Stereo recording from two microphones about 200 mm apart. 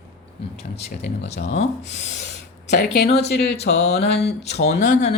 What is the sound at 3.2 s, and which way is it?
Speech, 55° left (ahead or behind).